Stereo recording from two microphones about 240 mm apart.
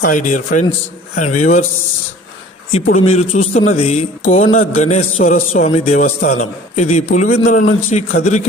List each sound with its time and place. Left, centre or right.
0.0 s a man's voice: left
2.7 s a man's voice: left